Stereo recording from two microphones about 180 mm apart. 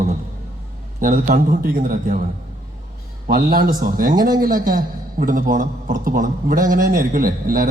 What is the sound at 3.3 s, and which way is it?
A man's voice, 55° right (ahead or behind).